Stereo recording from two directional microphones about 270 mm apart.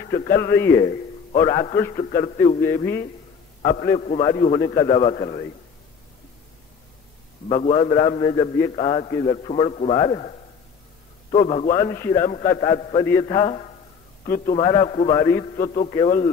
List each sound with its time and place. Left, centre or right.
0.5 s a man's voice: centre
4.0 s a man's voice: left
7.4 s a man's voice: left
11.3 s a man's voice: left
11.8 s a man's voice: centre
12.3 s a man's voice: left
14.2 s a man's voice: left
14.6 s a man's voice: centre
15.5 s a man's voice: left